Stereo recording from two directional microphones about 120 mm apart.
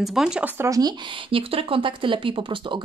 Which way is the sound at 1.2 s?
50° right (ahead or behind).